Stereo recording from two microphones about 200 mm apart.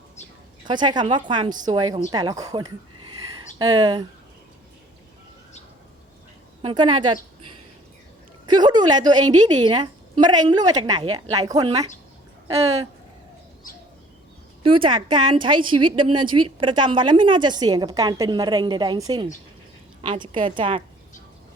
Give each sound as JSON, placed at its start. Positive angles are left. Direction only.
{"t": 0.2, "sound": "bird", "side_deg": 35}
{"t": 0.7, "sound": "a woman's voice", "side_deg": -20}
{"t": 6.6, "sound": "a woman's voice", "side_deg": -25}
{"t": 8.4, "sound": "a woman's voice", "side_deg": -20}
{"t": 14.6, "sound": "a woman's voice", "side_deg": -25}